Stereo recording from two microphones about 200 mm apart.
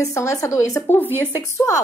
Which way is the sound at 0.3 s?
10° left (ahead or behind).